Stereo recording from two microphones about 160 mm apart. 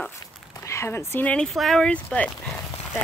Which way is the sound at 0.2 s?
20° left (ahead or behind).